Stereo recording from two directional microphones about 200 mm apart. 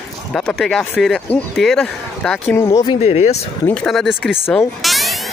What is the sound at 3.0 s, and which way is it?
Speech, 30° left (ahead or behind).